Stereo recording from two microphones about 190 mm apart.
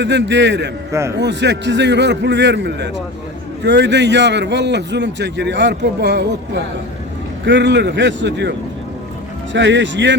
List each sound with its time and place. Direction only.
0.0 s a man's voice: 65° right (ahead or behind)